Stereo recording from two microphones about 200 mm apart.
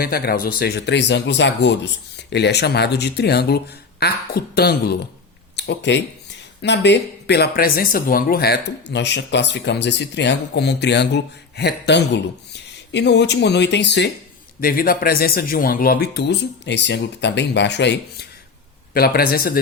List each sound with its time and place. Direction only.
0.0 s speech: 50° left (ahead or behind)
14.6 s speech: 45° left (ahead or behind)
18.9 s speech: 50° left (ahead or behind)